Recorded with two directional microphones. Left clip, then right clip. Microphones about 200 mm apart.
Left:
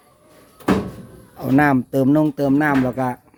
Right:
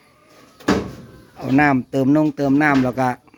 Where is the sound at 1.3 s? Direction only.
15° left (ahead or behind).